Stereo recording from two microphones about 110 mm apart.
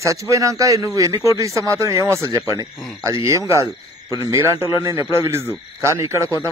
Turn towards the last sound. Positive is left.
turn(degrees=-25)  # may be behind; listen again after turning